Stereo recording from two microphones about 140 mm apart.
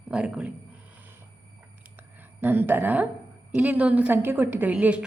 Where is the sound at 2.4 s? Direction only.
15° right (ahead or behind).